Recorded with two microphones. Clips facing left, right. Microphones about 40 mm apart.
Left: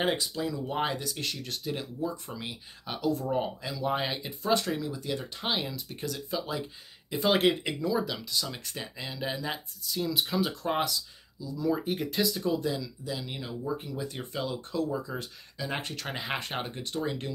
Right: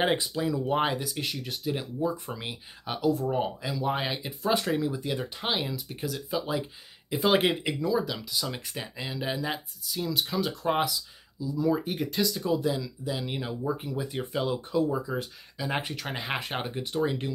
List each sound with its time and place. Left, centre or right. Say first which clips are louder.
0.0 s speech: right 3 dB; centre
10.6 s speech: right 2 dB; centre; by 13.7 s right
13.8 s speech: right 4 dB; centre